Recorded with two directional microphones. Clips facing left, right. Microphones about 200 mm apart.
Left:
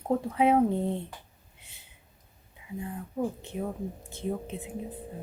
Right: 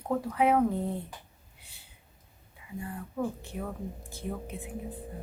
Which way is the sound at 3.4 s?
20° left (ahead or behind).